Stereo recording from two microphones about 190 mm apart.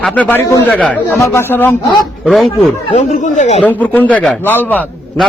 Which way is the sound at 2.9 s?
40° left (ahead or behind).